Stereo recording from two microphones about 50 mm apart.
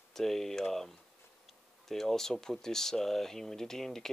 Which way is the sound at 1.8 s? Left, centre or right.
Centre.